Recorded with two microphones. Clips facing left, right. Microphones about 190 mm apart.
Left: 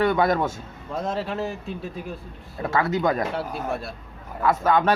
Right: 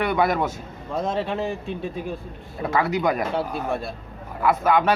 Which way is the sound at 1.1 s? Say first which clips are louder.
Right 2 dB; 20° right (ahead or behind).